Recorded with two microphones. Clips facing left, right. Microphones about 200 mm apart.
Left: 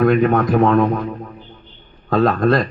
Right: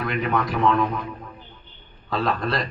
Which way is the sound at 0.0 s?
50° left (ahead or behind).